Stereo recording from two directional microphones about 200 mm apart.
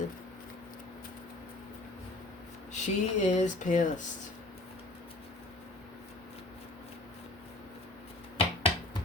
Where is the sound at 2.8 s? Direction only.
35° left (ahead or behind).